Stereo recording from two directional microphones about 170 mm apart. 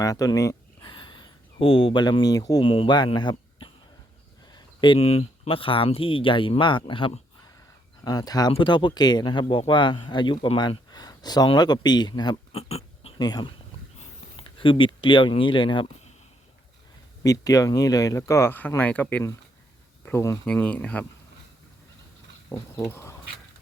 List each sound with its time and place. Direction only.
0.0 s speech: 20° left (ahead or behind)
13.2 s speech: 25° left (ahead or behind)
17.2 s speech: 20° left (ahead or behind)
22.4 s speech: 15° left (ahead or behind)